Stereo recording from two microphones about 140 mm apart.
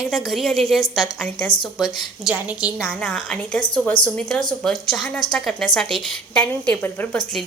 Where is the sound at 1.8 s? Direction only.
5° right (ahead or behind).